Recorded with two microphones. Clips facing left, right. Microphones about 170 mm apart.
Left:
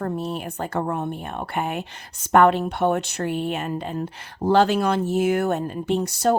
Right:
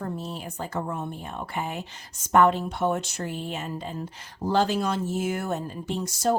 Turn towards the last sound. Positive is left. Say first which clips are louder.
# left 5 dB
turn(degrees=65)  # may be behind; listen again after turning